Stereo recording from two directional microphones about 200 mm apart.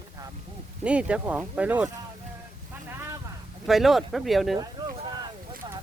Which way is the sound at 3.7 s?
Centre (ahead or behind).